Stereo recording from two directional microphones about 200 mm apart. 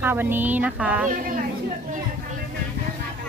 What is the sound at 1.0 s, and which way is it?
Speech, 40° right (ahead or behind).